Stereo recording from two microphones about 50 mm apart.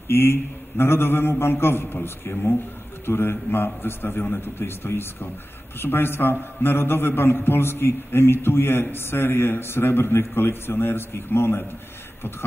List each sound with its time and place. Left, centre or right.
0.1 s a man's voice: left